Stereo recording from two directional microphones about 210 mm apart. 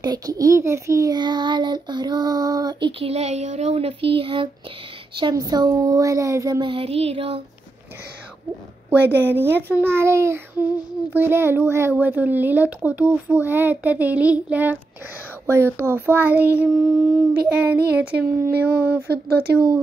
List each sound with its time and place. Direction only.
0.0 s a child's voice: 20° right (ahead or behind)
8.9 s speech: 10° right (ahead or behind)
19.0 s speech: 50° right (ahead or behind)